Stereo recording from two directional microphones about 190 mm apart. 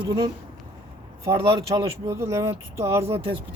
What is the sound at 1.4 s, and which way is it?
Speech, 25° right (ahead or behind).